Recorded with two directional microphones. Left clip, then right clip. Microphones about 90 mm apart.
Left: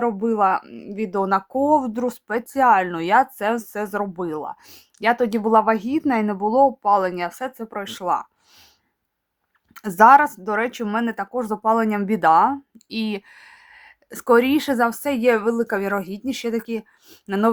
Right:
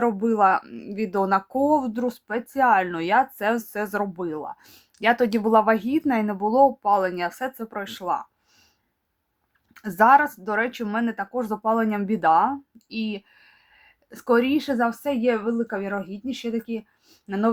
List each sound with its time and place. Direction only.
0.0 s speech: 10° left (ahead or behind)
7.9 s speech: 40° left (ahead or behind)
9.7 s speech: 35° left (ahead or behind); by 17.5 s 55° left (ahead or behind)